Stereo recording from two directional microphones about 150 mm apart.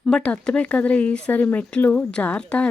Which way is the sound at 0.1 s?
5° left (ahead or behind).